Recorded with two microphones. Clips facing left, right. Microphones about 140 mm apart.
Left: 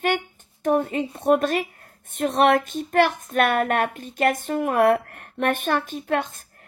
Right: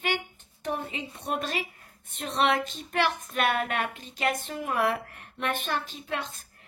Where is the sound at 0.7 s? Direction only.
50° left (ahead or behind).